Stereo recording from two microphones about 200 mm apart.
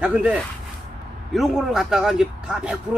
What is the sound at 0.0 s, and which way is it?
Speech, 5° right (ahead or behind).